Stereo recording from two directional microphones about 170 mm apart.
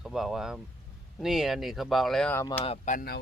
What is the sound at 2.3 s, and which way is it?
Speech, 15° left (ahead or behind).